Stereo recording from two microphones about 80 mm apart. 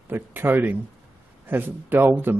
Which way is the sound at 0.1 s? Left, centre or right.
Right.